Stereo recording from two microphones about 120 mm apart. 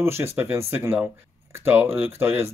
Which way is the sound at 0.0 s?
20° right (ahead or behind).